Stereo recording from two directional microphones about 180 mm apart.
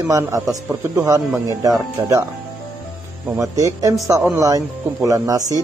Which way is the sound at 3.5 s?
20° right (ahead or behind).